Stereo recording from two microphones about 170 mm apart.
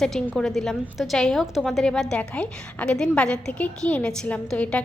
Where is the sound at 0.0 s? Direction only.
5° left (ahead or behind).